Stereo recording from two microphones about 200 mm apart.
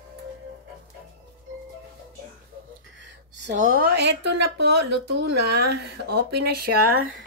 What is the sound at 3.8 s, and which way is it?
Speech, 55° right (ahead or behind).